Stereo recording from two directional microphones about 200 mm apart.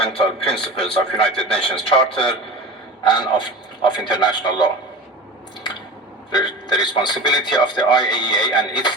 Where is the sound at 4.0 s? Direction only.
20° left (ahead or behind).